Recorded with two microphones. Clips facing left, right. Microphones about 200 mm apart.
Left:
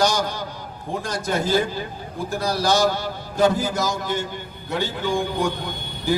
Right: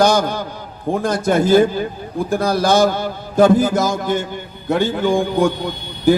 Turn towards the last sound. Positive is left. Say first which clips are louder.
# right 8 dB
turn(degrees=-55)  # may be behind; listen again after turning